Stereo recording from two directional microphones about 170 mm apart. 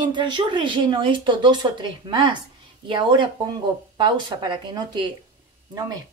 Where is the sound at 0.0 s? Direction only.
25° right (ahead or behind).